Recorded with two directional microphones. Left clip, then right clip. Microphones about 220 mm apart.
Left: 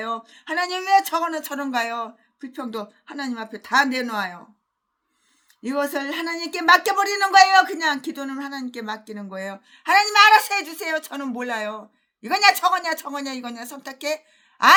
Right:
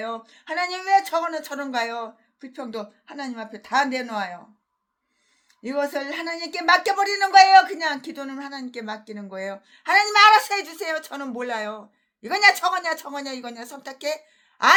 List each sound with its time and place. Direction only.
0.0 s speech: 15° left (ahead or behind)
5.6 s speech: 15° left (ahead or behind)